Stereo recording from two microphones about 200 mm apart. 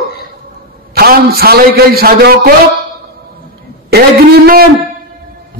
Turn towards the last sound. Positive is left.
turn(degrees=-50)  # may be behind; listen again after turning